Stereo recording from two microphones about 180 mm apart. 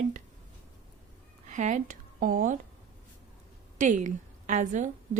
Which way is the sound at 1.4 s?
45° right (ahead or behind).